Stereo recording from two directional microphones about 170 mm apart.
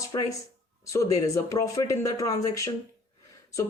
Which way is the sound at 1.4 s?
20° left (ahead or behind).